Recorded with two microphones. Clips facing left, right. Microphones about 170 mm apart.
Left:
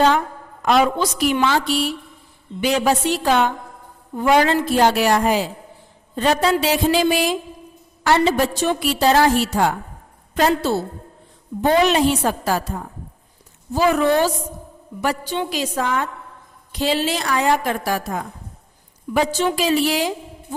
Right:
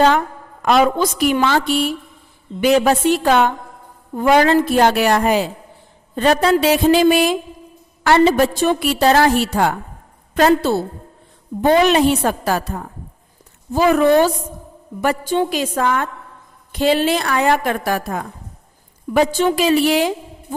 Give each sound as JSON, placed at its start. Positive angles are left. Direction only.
{"t": 0.6, "sound": "a woman's voice", "side_deg": -55}
{"t": 13.7, "sound": "a woman's voice", "side_deg": -55}